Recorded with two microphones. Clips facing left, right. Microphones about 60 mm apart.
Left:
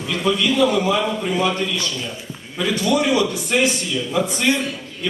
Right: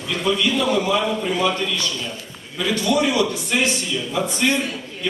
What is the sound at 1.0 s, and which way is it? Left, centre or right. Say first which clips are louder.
Speech: even; centre.